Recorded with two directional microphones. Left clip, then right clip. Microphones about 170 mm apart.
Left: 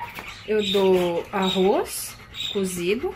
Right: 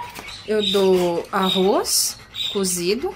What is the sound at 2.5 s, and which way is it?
Speech, 15° right (ahead or behind).